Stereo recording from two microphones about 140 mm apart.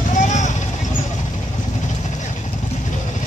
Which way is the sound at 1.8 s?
60° left (ahead or behind).